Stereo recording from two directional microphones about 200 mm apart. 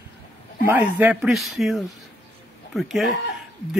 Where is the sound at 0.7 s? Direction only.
10° right (ahead or behind).